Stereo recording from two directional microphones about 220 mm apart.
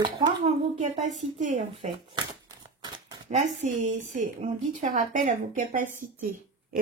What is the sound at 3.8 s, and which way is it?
A woman's voice, 35° right (ahead or behind).